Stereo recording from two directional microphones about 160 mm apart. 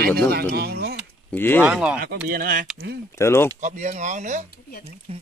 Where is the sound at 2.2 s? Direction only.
65° right (ahead or behind).